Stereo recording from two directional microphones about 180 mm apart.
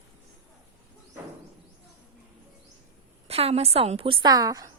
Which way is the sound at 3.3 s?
35° right (ahead or behind).